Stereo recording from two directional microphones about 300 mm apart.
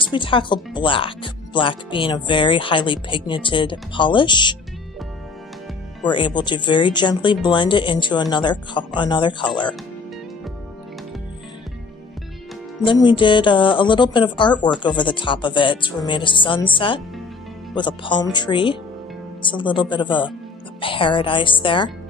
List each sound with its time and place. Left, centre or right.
0.1 s speech: centre
6.0 s speech: centre
12.8 s speech: centre